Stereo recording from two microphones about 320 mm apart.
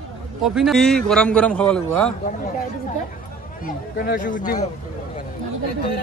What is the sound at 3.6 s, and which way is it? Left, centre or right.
Speech, left.